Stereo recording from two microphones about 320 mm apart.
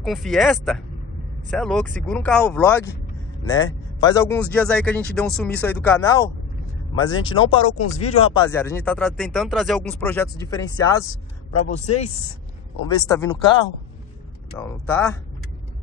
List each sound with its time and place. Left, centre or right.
0.0 s speech: centre
8.5 s speech: centre
12.8 s speech: centre